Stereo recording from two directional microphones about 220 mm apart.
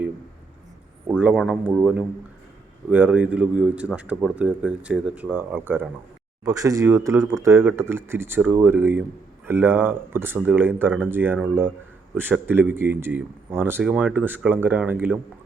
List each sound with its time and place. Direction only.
1.2 s a man's voice: 5° right (ahead or behind)